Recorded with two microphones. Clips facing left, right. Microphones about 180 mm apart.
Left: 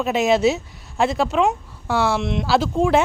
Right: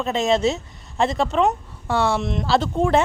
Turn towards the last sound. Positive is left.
turn(degrees=0)  # may be behind; listen again after turning